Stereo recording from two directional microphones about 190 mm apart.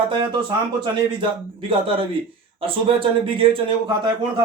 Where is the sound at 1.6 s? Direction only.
25° right (ahead or behind).